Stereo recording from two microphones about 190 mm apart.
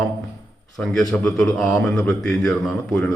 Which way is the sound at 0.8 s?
5° left (ahead or behind).